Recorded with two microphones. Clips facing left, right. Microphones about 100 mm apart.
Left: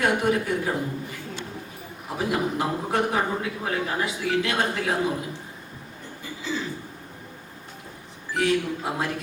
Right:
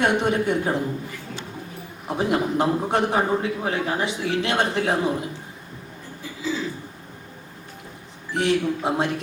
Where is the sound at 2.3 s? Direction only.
25° right (ahead or behind).